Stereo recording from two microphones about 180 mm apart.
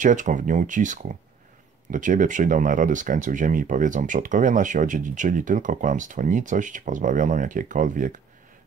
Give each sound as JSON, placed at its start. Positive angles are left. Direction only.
{"t": 0.0, "sound": "speech", "side_deg": -45}